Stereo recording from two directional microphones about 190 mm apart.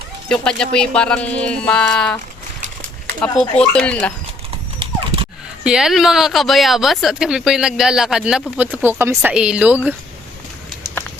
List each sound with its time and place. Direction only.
0.3 s speech: 5° left (ahead or behind)
3.6 s speech: 5° left (ahead or behind)
4.8 s dog: 30° right (ahead or behind)
5.6 s speech: 5° right (ahead or behind)